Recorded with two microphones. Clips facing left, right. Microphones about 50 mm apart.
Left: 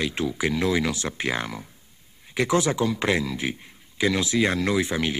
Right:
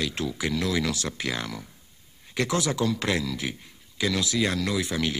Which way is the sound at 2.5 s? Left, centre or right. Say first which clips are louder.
Left 4 dB; left.